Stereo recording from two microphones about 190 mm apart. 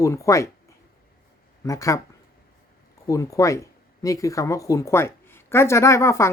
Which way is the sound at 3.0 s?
15° left (ahead or behind).